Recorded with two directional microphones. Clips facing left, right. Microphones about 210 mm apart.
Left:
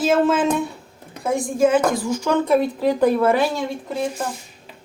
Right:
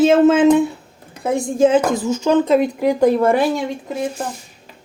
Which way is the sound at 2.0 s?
25° right (ahead or behind).